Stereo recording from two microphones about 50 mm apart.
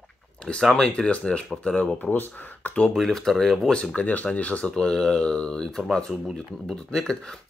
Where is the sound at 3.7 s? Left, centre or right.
Left.